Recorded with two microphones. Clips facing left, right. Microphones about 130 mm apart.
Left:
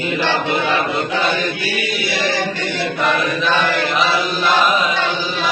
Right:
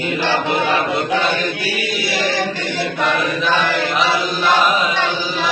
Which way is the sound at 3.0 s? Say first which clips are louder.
Left 1 dB; centre (ahead or behind).